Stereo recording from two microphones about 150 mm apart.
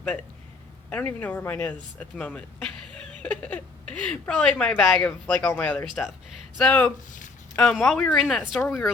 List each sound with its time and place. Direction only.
0.9 s speech: 10° left (ahead or behind)